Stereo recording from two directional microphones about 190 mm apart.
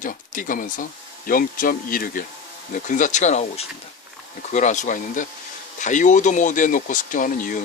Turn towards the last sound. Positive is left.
turn(degrees=45)  # may be behind; listen again after turning